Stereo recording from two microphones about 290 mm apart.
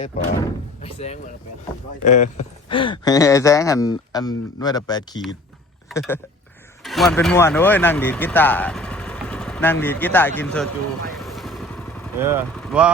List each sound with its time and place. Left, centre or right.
0.0 s speech: left
5.9 s speech: centre
11.2 s vehicle: centre
12.2 s speech: centre